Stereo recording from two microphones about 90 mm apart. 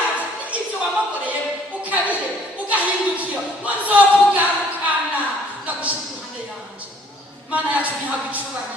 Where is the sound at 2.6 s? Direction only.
15° right (ahead or behind).